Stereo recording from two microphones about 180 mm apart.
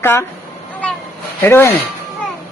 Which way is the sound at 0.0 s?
10° left (ahead or behind).